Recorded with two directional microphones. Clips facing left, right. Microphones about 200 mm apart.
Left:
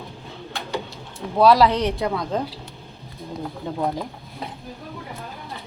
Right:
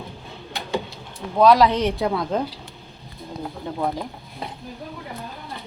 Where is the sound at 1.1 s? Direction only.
5° left (ahead or behind).